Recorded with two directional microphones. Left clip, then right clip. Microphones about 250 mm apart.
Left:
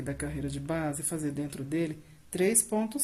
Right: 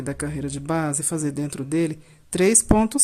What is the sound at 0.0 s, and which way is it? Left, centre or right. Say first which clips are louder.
Speech: right 7 dB; right.